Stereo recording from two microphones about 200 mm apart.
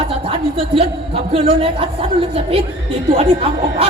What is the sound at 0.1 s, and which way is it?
A woman's voice, 25° right (ahead or behind).